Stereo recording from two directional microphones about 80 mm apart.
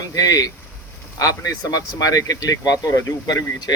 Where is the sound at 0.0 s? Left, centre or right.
Left.